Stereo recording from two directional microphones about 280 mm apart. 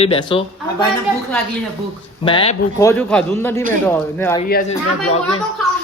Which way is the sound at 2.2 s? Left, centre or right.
Centre.